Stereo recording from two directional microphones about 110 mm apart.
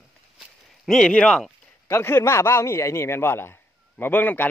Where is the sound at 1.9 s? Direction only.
25° left (ahead or behind).